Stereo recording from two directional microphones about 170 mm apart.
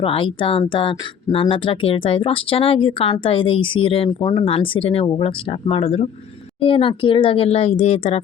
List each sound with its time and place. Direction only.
0.0 s speech: 30° left (ahead or behind)